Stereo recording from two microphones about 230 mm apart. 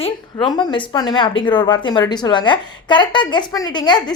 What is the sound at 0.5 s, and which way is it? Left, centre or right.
A woman's voice, centre.